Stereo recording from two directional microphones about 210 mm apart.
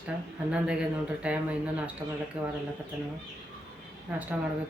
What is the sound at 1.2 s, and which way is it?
A woman's voice, 5° right (ahead or behind).